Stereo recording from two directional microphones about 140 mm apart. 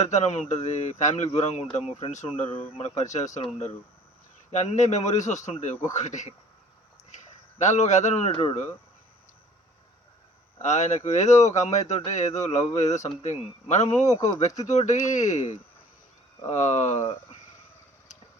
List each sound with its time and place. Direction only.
0.0 s a man's voice: 50° left (ahead or behind)
4.5 s speech: 55° left (ahead or behind)
7.6 s speech: 55° left (ahead or behind)
8.3 s speech: 40° left (ahead or behind)
10.6 s speech: 55° left (ahead or behind)